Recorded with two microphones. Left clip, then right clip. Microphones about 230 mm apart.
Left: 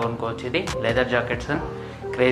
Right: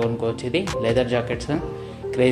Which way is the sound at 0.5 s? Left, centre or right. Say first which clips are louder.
Even; right.